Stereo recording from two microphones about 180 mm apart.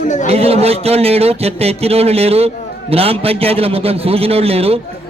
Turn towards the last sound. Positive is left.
turn(degrees=-35)  # may be behind; listen again after turning